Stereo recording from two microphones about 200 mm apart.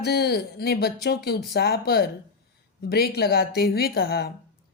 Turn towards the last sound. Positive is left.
turn(degrees=50)  # may be behind; listen again after turning